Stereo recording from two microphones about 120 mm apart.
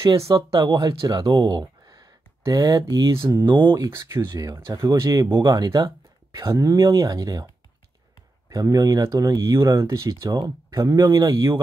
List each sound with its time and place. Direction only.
0.1 s speech: 25° right (ahead or behind)
0.5 s speech: 35° right (ahead or behind)
3.7 s speech: 25° right (ahead or behind)
8.5 s speech: 30° right (ahead or behind)